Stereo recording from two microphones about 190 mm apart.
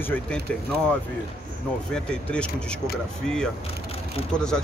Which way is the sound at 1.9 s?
5° left (ahead or behind).